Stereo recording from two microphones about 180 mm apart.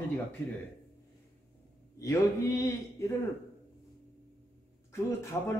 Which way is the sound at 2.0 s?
15° left (ahead or behind).